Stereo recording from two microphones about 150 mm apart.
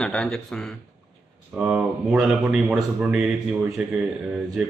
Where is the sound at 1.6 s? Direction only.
10° right (ahead or behind).